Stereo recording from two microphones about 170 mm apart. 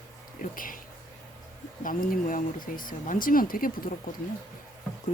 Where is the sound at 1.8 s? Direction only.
55° left (ahead or behind).